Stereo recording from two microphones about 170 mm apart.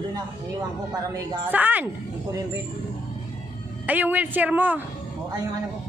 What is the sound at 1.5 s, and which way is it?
Speech, 10° right (ahead or behind).